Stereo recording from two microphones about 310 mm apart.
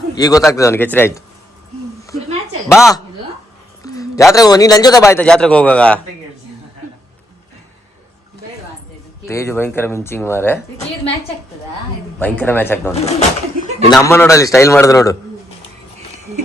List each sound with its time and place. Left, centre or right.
0.2 s a man's voice: centre
2.6 s a man's voice: centre
3.8 s a sound: centre
4.3 s a man's voice: centre
9.2 s a man's voice: centre
12.2 s a man's voice: centre
12.9 s speech: left
13.9 s a man's voice: centre